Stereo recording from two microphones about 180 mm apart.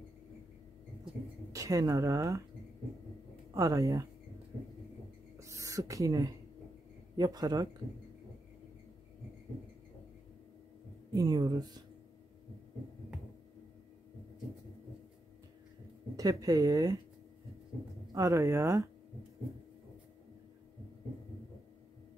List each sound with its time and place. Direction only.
1.5 s speech: 20° right (ahead or behind)
3.5 s speech: 20° right (ahead or behind)
5.4 s a sound: 15° right (ahead or behind)
7.2 s speech: 20° right (ahead or behind)
11.1 s speech: 20° right (ahead or behind)
16.2 s speech: 20° right (ahead or behind)
18.1 s speech: 15° right (ahead or behind)